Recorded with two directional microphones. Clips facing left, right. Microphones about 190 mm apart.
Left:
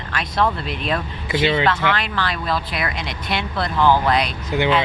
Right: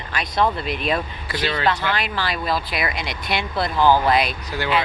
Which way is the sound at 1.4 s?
20° left (ahead or behind).